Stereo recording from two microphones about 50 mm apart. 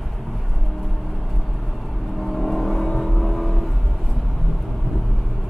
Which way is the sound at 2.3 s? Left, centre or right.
Centre.